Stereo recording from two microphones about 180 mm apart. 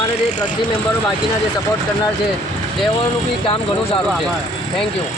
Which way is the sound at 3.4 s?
30° left (ahead or behind).